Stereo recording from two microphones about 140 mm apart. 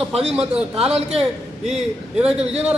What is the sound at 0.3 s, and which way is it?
A man's voice, 5° right (ahead or behind).